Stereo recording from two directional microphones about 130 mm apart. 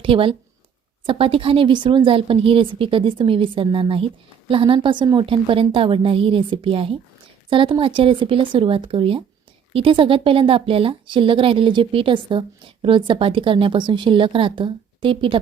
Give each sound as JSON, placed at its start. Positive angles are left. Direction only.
{"t": 0.0, "sound": "a woman's voice", "side_deg": -45}